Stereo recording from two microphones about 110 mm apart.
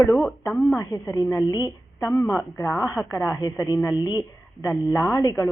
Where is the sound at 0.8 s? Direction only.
30° left (ahead or behind).